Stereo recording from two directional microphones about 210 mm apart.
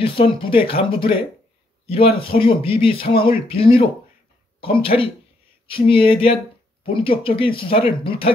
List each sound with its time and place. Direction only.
0.0 s speech: 25° left (ahead or behind)